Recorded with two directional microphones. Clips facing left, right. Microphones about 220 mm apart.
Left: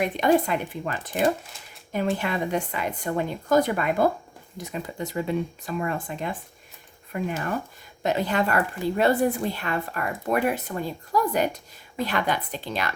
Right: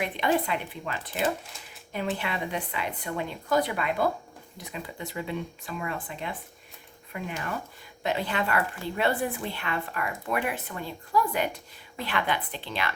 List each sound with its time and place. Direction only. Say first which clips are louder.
0.0 s speech: left 6 dB; 45° left (ahead or behind)